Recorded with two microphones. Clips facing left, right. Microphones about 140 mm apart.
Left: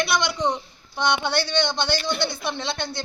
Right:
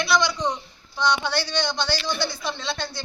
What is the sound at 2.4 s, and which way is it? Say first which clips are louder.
Speech: left 1 dB; 55° left (ahead or behind).